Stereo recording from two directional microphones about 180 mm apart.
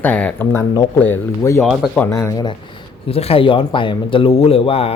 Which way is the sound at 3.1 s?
35° left (ahead or behind).